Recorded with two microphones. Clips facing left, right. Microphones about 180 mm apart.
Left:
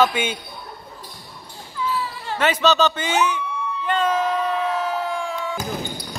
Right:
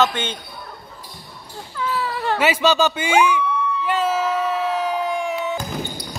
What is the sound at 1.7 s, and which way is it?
Basketball bounce, 70° right (ahead or behind).